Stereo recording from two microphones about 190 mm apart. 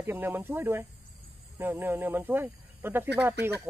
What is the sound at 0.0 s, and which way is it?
Speech, 10° right (ahead or behind).